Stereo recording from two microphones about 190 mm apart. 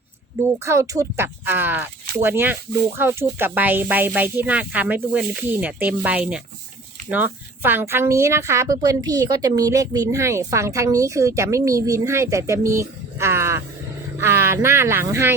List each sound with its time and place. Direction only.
0.4 s a woman's voice: 15° right (ahead or behind)